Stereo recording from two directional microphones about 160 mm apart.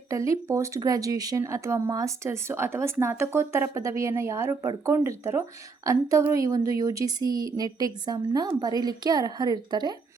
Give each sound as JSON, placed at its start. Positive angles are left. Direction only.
{"t": 0.1, "sound": "a woman's voice", "side_deg": -20}